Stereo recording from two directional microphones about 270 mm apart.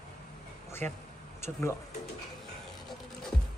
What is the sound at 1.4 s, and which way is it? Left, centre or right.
Speech, centre.